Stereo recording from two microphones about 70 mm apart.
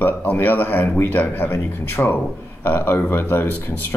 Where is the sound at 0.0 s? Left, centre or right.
Left.